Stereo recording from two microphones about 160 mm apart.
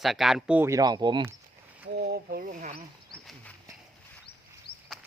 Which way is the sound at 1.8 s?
90° right.